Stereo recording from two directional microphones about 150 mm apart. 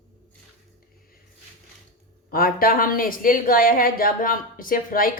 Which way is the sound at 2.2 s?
80° left.